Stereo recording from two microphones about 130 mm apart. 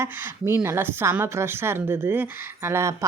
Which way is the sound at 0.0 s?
20° right (ahead or behind).